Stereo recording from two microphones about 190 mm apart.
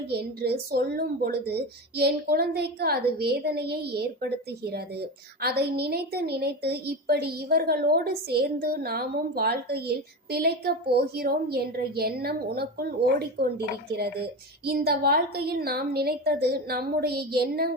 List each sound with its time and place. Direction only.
0.1 s a woman's voice: 60° right (ahead or behind)
5.4 s a woman's voice: 55° right (ahead or behind)